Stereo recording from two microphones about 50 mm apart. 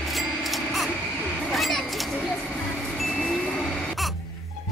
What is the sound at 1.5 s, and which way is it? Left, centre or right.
Children playing, centre.